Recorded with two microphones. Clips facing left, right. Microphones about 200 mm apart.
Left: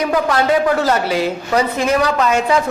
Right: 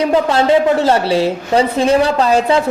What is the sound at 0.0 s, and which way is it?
A woman's voice, 25° right (ahead or behind).